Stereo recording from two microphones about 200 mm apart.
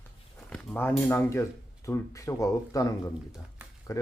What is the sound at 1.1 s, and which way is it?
Speech, 10° left (ahead or behind).